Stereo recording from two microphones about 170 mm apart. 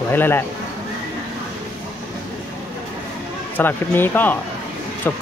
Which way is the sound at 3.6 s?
10° left (ahead or behind).